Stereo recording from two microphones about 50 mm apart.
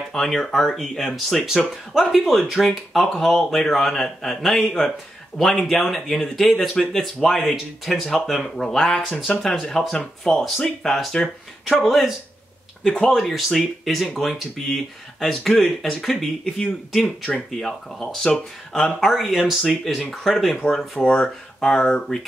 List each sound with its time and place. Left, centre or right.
0.1 s speech: centre
11.8 s speech: centre
13.1 s speech: centre
21.1 s speech: centre